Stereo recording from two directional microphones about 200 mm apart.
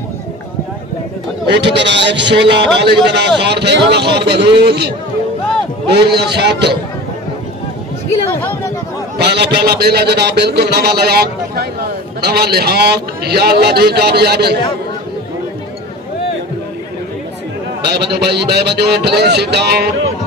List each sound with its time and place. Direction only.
1.5 s a man's voice: 60° right (ahead or behind)
9.2 s a man's voice: 55° right (ahead or behind)
17.9 s a man's voice: 55° right (ahead or behind)